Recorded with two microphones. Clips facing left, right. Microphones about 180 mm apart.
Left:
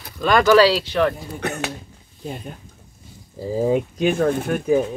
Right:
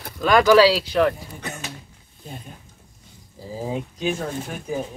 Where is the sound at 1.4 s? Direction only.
65° left (ahead or behind).